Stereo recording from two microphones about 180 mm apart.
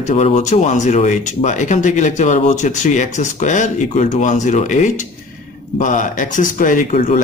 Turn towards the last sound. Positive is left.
turn(degrees=45)  # may be behind; listen again after turning